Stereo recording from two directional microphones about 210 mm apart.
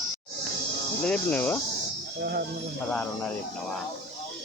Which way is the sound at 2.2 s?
45° right (ahead or behind).